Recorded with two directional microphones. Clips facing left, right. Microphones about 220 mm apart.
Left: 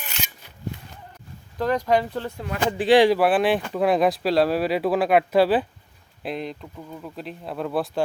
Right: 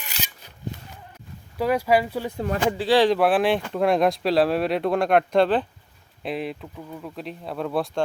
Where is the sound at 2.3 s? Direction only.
40° right (ahead or behind).